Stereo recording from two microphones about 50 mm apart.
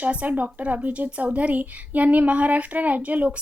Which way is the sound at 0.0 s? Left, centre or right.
Right.